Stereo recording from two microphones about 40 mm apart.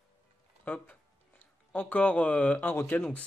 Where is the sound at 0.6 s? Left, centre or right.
Left.